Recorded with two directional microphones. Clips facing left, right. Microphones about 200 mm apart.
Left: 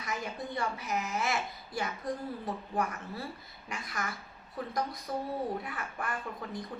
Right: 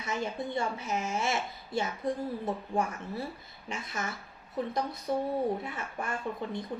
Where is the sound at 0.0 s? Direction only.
25° right (ahead or behind).